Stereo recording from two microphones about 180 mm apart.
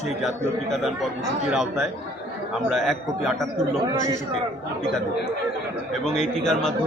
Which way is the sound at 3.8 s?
20° right (ahead or behind).